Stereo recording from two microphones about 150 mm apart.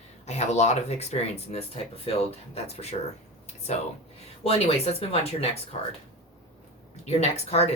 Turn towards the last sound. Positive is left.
turn(degrees=45)  # may be behind; listen again after turning